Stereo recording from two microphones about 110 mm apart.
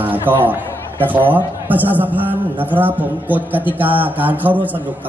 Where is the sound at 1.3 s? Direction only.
15° right (ahead or behind).